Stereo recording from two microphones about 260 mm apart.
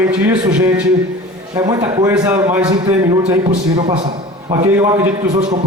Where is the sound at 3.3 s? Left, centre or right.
Right.